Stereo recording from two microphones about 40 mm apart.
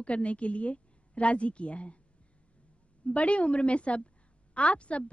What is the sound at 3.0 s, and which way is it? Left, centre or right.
A woman's voice, left.